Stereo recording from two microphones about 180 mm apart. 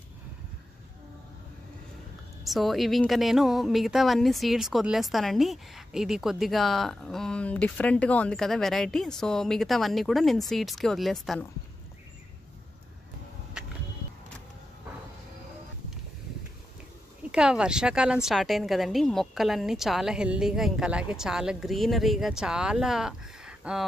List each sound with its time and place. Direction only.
2.4 s a woman's voice: centre (ahead or behind)
17.3 s a woman's voice: 5° right (ahead or behind)